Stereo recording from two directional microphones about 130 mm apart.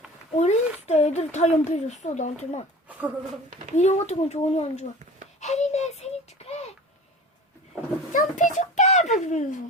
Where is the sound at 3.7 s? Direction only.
60° left (ahead or behind).